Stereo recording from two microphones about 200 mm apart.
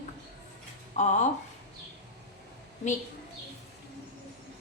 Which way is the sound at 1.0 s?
35° left (ahead or behind).